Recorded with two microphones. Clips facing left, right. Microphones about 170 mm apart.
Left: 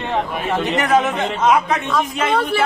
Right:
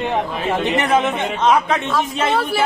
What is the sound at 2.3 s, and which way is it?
Speech, 5° right (ahead or behind).